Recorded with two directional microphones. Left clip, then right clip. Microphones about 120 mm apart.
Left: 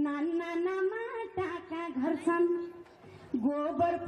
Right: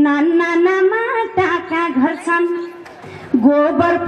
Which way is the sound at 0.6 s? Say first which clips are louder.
Right 18 dB; 30° right (ahead or behind).